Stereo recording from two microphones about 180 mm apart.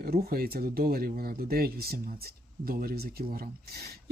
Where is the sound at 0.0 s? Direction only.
55° right (ahead or behind).